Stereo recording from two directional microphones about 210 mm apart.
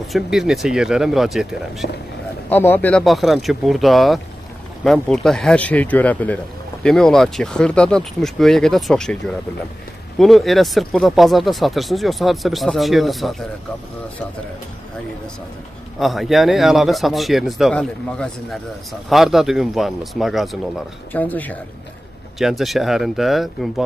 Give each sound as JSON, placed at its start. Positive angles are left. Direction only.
{"t": 0.1, "sound": "a man's voice", "side_deg": 0}
{"t": 16.0, "sound": "a man's voice", "side_deg": 0}